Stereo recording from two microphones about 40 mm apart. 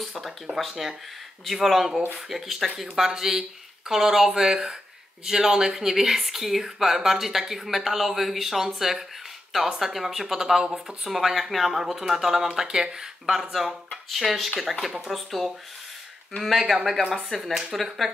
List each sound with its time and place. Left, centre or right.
0.0 s speech: centre
12.6 s speech: right
13.3 s speech: centre
17.7 s speech: centre